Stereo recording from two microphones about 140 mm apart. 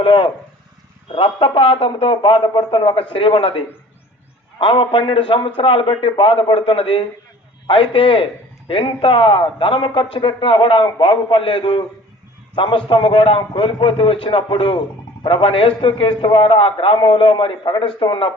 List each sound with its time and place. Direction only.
0.0 s a man's voice: 40° left (ahead or behind)
4.6 s a man's voice: 35° left (ahead or behind)